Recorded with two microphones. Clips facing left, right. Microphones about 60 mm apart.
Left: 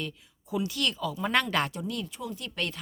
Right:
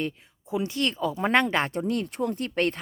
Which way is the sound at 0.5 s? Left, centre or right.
Right.